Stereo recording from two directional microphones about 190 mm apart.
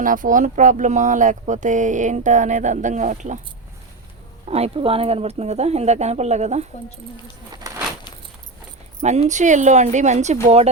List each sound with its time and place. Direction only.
0.0 s speech: 45° right (ahead or behind)
4.4 s speech: 35° right (ahead or behind)
7.6 s a sound: 15° right (ahead or behind)
9.0 s speech: 35° right (ahead or behind)